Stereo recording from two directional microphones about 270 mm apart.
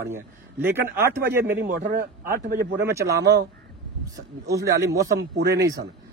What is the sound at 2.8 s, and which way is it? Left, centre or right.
Speech, centre.